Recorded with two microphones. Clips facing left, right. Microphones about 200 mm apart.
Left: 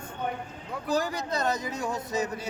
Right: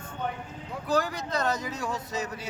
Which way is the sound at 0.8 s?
15° left (ahead or behind).